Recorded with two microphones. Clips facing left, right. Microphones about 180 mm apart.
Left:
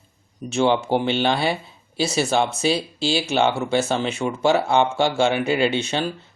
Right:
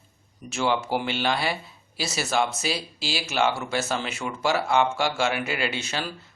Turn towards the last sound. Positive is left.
turn(degrees=25)  # may be behind; listen again after turning